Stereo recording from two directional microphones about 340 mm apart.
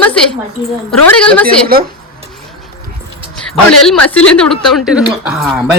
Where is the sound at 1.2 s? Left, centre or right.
Centre.